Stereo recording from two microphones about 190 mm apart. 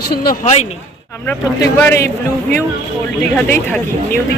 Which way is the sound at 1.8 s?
15° left (ahead or behind).